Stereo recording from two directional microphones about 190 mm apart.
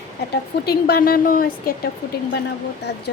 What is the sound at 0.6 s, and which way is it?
A woman's voice, 55° left (ahead or behind).